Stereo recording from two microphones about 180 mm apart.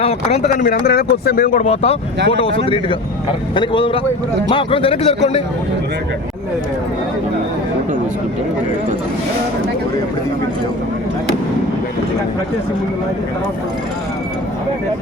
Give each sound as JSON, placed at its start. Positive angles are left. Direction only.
{"t": 0.0, "sound": "a man's voice", "side_deg": 35}
{"t": 0.5, "sound": "speech", "side_deg": 55}
{"t": 1.6, "sound": "a man's voice", "side_deg": 35}